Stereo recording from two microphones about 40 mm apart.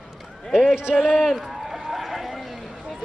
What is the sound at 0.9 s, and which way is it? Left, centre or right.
Speech, left.